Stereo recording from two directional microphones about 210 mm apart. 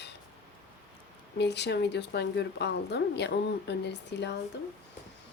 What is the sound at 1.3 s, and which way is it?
Speech, 55° left (ahead or behind).